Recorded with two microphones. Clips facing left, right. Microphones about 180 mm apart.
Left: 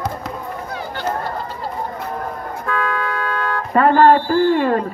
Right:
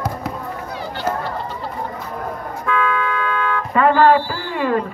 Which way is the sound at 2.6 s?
40° left (ahead or behind).